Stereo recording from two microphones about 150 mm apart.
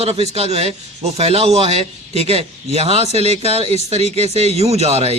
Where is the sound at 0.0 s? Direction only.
45° right (ahead or behind).